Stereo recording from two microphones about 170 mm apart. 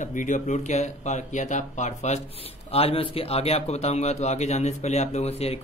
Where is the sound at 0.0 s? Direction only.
50° left (ahead or behind).